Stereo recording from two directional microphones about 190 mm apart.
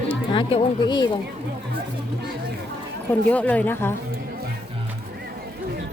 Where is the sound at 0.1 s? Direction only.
25° left (ahead or behind).